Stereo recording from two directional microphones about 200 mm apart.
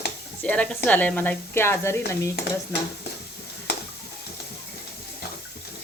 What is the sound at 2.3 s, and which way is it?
Stir, 50° left (ahead or behind).